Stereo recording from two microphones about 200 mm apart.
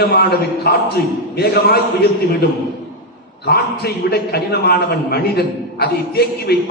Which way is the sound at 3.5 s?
50° left (ahead or behind).